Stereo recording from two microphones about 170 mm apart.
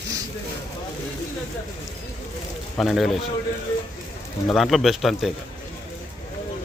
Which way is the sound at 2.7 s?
Centre (ahead or behind).